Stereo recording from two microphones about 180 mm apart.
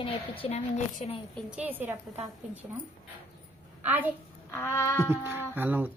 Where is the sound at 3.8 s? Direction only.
10° right (ahead or behind).